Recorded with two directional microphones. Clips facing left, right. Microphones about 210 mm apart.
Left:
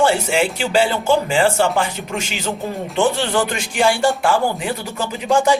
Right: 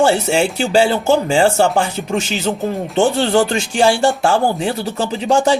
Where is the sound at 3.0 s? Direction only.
30° right (ahead or behind).